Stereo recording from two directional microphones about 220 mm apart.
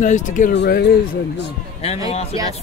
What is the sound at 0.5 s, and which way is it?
Speech, 50° left (ahead or behind).